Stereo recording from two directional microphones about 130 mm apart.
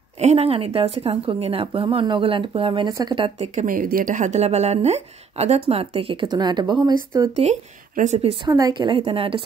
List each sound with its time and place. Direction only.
0.2 s a woman's voice: 55° right (ahead or behind)
2.9 s speech: 25° right (ahead or behind)
3.5 s speech: 90° right; by 6.1 s 50° right (ahead or behind)
6.2 s speech: 35° right (ahead or behind)
7.9 s speech: 75° right (ahead or behind)
8.5 s speech: 30° right (ahead or behind)